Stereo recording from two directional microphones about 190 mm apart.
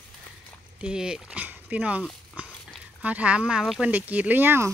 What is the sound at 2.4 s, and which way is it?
Dog, 10° right (ahead or behind).